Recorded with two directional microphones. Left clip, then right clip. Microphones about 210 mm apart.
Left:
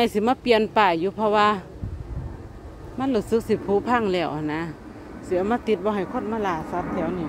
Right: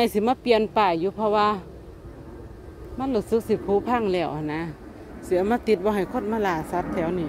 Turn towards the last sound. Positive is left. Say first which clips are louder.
# right 1 dB
turn(degrees=-20)  # may be behind; listen again after turning